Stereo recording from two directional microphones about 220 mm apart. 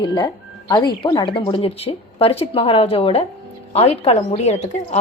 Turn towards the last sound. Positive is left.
turn(degrees=30)  # may be behind; listen again after turning